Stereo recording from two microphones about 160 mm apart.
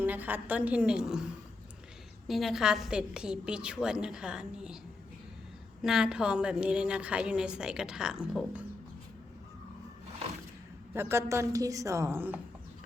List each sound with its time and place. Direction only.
0.0 s a woman's voice: 10° right (ahead or behind)
5.8 s a woman's voice: 5° right (ahead or behind)
10.9 s a woman's voice: 15° right (ahead or behind)